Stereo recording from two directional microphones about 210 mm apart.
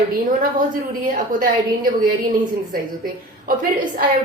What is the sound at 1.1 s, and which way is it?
Speech, 40° right (ahead or behind).